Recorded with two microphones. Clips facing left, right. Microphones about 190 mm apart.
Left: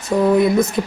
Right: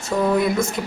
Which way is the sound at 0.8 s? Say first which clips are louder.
Left 5 dB; 25° left (ahead or behind).